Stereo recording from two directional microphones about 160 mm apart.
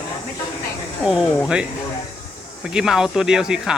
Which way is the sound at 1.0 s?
5° right (ahead or behind).